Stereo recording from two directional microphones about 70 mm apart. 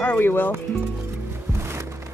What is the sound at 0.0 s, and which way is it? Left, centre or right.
Speech, left.